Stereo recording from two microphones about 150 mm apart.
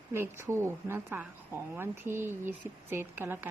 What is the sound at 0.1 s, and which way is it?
Speech, 15° right (ahead or behind).